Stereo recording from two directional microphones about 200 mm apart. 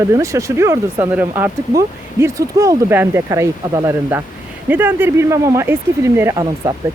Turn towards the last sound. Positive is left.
turn(degrees=-20)  # may be behind; listen again after turning